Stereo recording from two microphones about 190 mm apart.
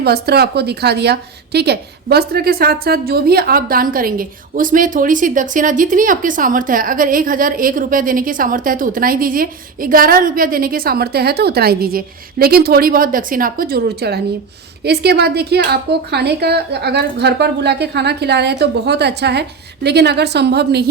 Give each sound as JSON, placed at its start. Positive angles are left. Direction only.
{"t": 0.0, "sound": "a woman's voice", "side_deg": -55}